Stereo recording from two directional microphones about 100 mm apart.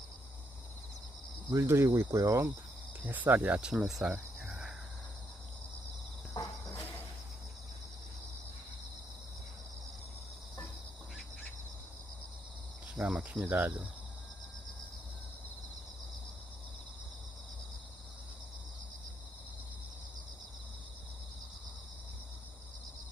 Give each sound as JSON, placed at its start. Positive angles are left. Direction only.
{"t": 1.5, "sound": "speech", "side_deg": -30}
{"t": 3.1, "sound": "speech", "side_deg": -15}
{"t": 6.3, "sound": "cricket", "side_deg": 40}
{"t": 13.0, "sound": "cricket", "side_deg": -10}